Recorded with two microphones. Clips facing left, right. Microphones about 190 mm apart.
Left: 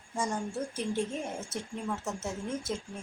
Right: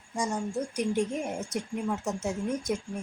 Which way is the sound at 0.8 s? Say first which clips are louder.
Right 5 dB; 15° right (ahead or behind).